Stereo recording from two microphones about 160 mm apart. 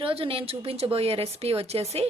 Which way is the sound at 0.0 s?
35° right (ahead or behind).